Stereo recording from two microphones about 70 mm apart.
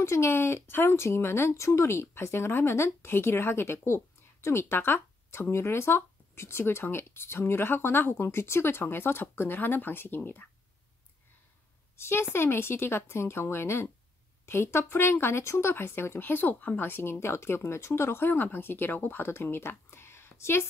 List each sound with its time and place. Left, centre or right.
0.0 s speech: left
12.0 s speech: left